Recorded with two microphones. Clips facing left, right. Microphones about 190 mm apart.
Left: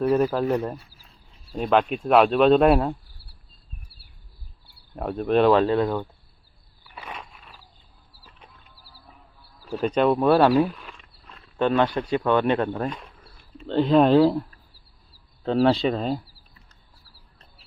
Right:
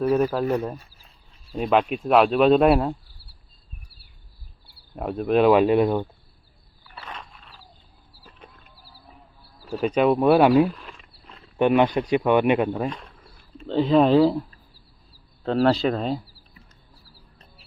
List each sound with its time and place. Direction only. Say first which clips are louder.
0.1 s speech: even; centre (ahead or behind)
4.9 s speech: even; 5° right (ahead or behind)
6.9 s a sound: left 1 dB; 10° left (ahead or behind)
8.8 s a sound: right 3 dB; 50° right (ahead or behind)
9.7 s speech: right 1 dB; 5° right (ahead or behind)
11.5 s speech: right 3 dB; 15° right (ahead or behind); by 14.4 s centre (ahead or behind)
15.4 s speech: even; centre (ahead or behind)